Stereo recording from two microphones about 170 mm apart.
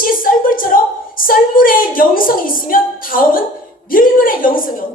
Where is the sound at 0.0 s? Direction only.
55° left (ahead or behind).